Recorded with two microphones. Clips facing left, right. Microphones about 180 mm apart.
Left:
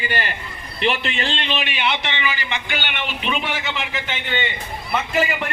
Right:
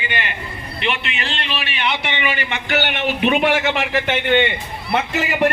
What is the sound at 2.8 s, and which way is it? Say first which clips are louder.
A man's voice: right 8 dB; 50° right (ahead or behind).